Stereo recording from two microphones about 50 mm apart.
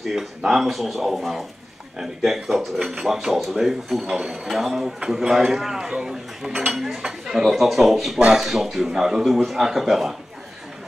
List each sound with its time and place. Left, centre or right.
0.0 s speech: centre
4.0 s speech: centre